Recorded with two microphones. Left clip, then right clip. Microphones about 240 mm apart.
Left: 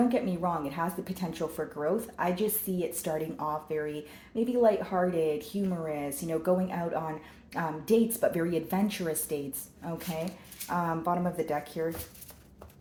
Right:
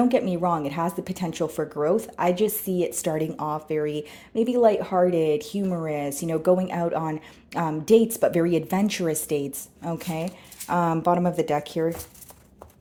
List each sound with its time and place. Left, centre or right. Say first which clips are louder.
0.1 s speech: right 7 dB; right